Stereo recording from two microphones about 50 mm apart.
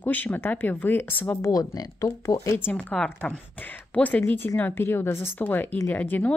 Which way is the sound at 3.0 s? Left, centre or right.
Centre.